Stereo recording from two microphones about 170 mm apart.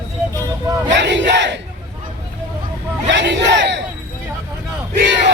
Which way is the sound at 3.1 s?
90° right.